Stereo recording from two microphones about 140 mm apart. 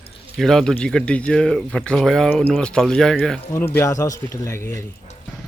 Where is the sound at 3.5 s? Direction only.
15° left (ahead or behind).